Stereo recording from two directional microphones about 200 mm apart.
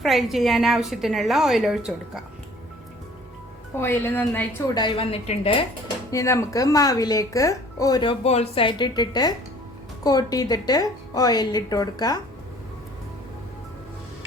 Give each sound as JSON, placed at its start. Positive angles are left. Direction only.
{"t": 0.0, "sound": "a woman's voice", "side_deg": 0}
{"t": 3.8, "sound": "speech", "side_deg": 10}
{"t": 4.7, "sound": "a woman's voice", "side_deg": 20}
{"t": 6.1, "sound": "speech", "side_deg": 15}
{"t": 8.2, "sound": "a woman's voice", "side_deg": 30}